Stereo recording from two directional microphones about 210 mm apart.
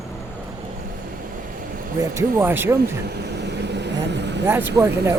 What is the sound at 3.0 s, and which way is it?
Vehicle, 50° right (ahead or behind).